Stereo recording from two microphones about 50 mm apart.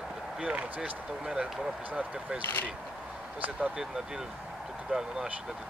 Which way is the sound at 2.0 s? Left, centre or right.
Right.